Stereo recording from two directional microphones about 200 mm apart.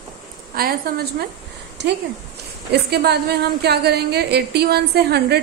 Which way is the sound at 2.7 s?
55° right (ahead or behind).